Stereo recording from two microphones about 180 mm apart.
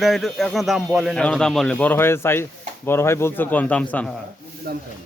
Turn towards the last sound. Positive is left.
turn(degrees=-60)  # may be behind; listen again after turning